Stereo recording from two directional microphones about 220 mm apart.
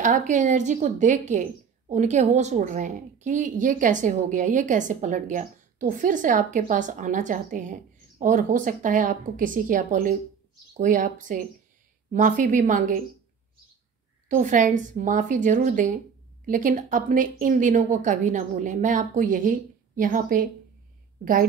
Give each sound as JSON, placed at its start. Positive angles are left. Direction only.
{"t": 0.0, "sound": "speech", "side_deg": -35}
{"t": 14.3, "sound": "a woman's voice", "side_deg": -35}